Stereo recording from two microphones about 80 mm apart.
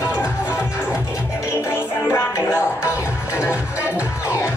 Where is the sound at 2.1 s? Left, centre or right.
Left.